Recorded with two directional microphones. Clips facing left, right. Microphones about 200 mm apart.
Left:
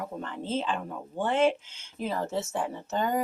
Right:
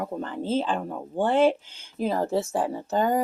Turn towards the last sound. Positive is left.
turn(degrees=-35)  # may be behind; listen again after turning